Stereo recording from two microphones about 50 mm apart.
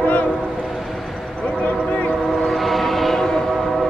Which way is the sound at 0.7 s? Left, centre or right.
Centre.